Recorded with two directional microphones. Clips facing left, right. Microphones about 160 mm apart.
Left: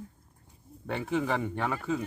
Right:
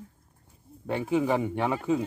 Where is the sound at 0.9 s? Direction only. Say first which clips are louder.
Right 4 dB; 10° right (ahead or behind).